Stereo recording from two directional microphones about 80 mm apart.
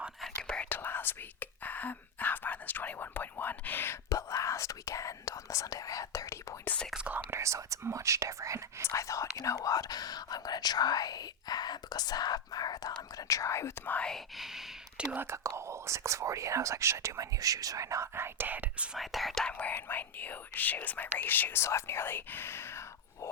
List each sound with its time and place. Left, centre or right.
0.4 s whispering: centre
0.7 s whispering: left
4.1 s whispering: left
7.3 s whispering: right
8.9 s whispering: left
13.9 s whispering: centre
14.3 s gasp: centre
15.1 s speech: right
18.9 s speech: centre
19.5 s speech: left